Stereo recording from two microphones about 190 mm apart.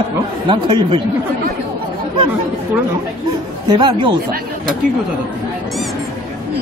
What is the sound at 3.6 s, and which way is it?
Speech, 25° right (ahead or behind).